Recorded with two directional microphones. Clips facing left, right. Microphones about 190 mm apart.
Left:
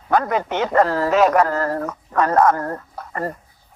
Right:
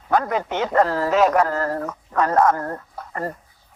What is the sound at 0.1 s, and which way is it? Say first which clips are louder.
A man's voice: left 2 dB; 70° left (ahead or behind).